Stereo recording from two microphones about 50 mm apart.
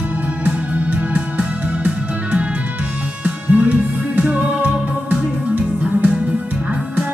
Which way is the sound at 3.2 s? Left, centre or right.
Right.